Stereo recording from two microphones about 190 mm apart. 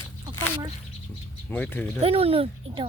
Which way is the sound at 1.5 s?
10° left (ahead or behind).